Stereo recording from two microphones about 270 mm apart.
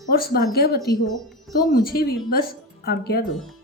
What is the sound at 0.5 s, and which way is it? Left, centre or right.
A woman's voice, left.